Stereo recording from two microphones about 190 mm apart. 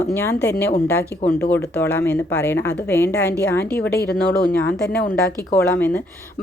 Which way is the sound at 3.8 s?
60° left (ahead or behind).